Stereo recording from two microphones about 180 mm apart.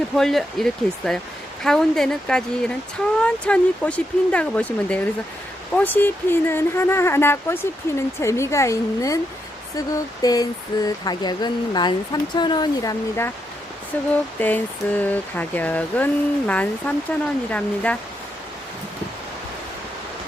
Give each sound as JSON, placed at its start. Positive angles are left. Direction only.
{"t": 0.2, "sound": "speech", "side_deg": 0}